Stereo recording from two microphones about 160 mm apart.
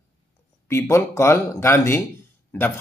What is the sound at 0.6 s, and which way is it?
Speech, 15° left (ahead or behind).